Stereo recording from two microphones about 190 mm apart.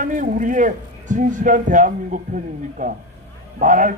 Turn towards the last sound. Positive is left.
turn(degrees=-45)  # may be behind; listen again after turning